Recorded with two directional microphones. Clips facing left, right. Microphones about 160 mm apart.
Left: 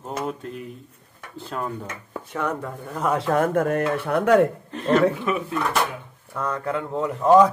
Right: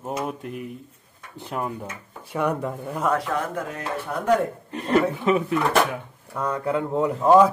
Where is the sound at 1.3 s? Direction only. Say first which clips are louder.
Even; 15° right (ahead or behind).